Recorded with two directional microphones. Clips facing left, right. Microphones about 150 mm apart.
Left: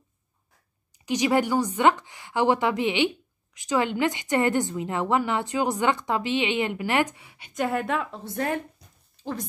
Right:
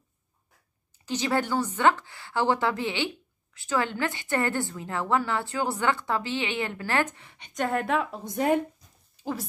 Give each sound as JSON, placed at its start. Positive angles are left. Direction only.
{"t": 0.9, "sound": "a woman's voice", "side_deg": 15}
{"t": 8.2, "sound": "speech", "side_deg": -15}